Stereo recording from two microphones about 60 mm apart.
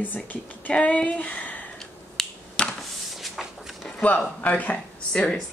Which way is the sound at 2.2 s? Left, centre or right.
Centre.